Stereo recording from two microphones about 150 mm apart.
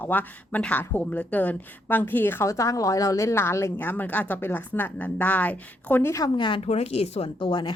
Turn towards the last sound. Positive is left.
turn(degrees=35)  # may be behind; listen again after turning